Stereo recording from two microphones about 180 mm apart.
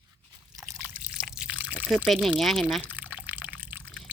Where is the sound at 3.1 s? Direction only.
10° right (ahead or behind).